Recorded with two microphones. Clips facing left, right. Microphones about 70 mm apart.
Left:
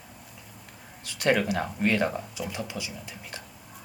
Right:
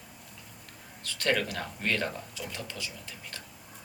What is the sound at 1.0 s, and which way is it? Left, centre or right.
Speech, centre.